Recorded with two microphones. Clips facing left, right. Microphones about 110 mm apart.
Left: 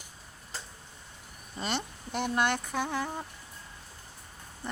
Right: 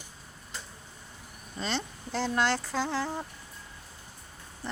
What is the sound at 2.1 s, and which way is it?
Speech, 20° left (ahead or behind).